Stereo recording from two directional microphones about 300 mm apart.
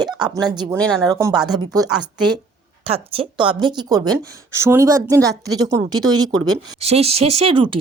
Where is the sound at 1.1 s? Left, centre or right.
Centre.